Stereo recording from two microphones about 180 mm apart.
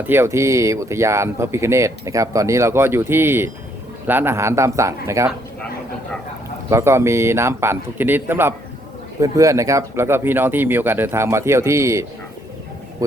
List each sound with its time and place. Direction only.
0.0 s speech: 10° right (ahead or behind)
6.7 s speech: 15° right (ahead or behind)